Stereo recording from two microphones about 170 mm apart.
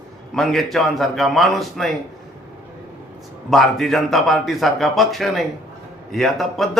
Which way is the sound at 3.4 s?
Centre (ahead or behind).